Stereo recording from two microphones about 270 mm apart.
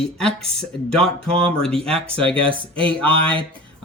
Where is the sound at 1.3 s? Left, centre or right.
Right.